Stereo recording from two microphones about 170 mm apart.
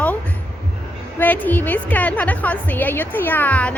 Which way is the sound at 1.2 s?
10° left (ahead or behind).